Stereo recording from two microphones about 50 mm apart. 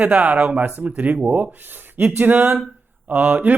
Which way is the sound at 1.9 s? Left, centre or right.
Right.